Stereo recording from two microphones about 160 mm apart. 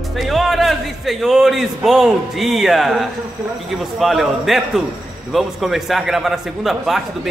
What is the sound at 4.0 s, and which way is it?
A man's voice, centre (ahead or behind).